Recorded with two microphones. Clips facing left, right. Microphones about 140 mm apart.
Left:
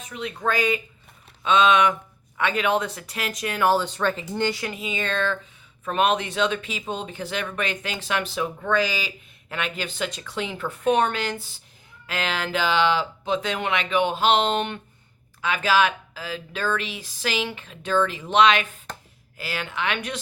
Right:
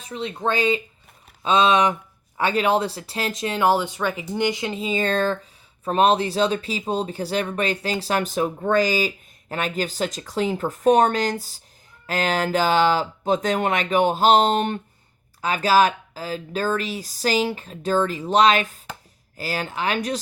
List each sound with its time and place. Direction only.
0.0 s speech: 30° right (ahead or behind)